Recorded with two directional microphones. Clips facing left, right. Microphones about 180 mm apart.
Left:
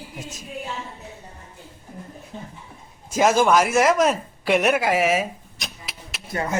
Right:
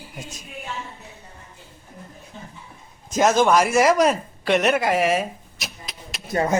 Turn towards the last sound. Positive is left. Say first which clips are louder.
# right 5 dB
turn(degrees=-25)  # may be behind; listen again after turning